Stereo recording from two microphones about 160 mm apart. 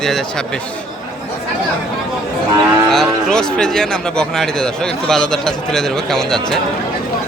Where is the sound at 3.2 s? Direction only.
5° left (ahead or behind).